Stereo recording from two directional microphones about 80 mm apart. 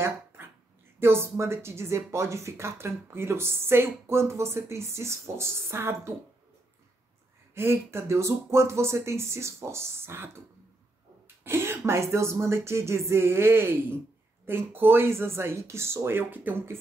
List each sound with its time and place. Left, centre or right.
0.9 s speech: right
7.5 s speech: right
11.4 s speech: right